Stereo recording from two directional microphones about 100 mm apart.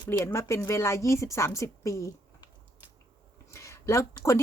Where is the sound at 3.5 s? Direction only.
30° left (ahead or behind).